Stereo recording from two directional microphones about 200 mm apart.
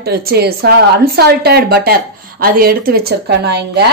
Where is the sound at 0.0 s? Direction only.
50° right (ahead or behind).